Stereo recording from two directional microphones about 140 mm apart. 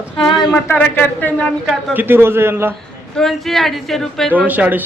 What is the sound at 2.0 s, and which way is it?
Speech, 15° right (ahead or behind).